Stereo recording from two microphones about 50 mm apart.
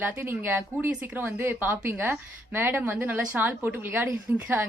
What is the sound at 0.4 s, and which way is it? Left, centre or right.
A woman's voice, right.